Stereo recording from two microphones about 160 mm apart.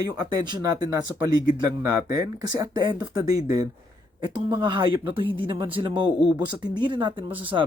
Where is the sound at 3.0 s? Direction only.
20° right (ahead or behind).